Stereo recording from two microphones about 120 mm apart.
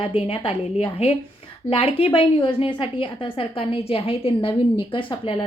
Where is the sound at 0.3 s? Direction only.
55° left (ahead or behind).